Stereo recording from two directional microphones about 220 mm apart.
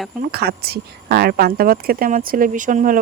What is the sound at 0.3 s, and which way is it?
Speech, 45° right (ahead or behind).